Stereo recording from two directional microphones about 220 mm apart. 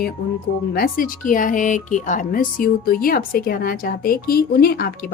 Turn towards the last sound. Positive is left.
turn(degrees=45)  # may be behind; listen again after turning